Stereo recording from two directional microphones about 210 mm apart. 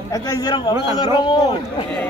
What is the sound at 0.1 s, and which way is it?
A man's voice, 15° left (ahead or behind).